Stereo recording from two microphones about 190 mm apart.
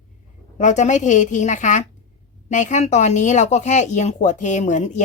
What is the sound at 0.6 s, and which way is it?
Speech, 40° left (ahead or behind).